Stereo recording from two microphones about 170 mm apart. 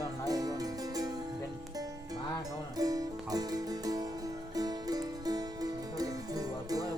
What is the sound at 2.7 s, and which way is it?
Music, 20° right (ahead or behind).